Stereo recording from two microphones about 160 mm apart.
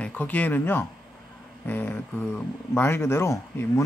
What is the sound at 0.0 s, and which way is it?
Speech, 10° left (ahead or behind).